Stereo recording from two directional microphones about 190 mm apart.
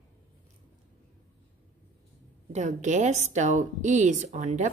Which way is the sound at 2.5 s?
40° right (ahead or behind).